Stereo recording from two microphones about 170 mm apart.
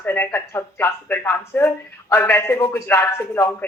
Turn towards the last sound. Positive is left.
turn(degrees=10)  # may be behind; listen again after turning